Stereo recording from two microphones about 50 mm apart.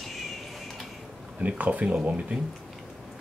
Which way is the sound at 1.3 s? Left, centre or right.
Right.